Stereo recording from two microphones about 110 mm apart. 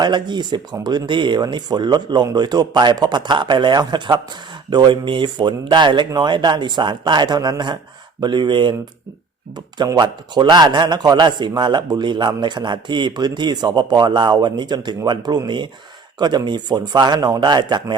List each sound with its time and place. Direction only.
0.0 s speech: 45° right (ahead or behind)